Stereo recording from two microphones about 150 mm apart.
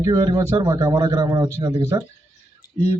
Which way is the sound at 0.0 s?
25° right (ahead or behind).